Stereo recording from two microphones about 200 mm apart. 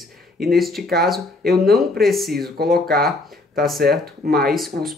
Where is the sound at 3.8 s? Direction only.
50° right (ahead or behind).